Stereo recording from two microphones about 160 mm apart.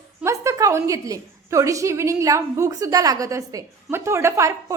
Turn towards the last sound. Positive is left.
turn(degrees=-15)  # may be behind; listen again after turning